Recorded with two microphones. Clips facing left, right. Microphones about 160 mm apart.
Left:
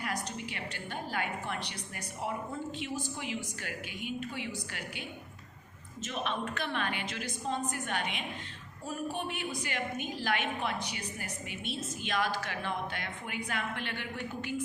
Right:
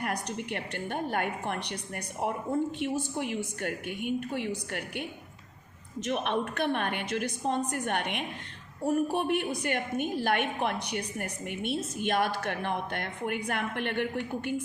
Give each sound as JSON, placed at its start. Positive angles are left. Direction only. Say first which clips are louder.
{"t": 0.0, "sound": "a woman's voice", "louder": "right 4 dB", "side_deg": -60}
{"t": 6.1, "sound": "a woman's voice", "louder": "right 6 dB", "side_deg": -60}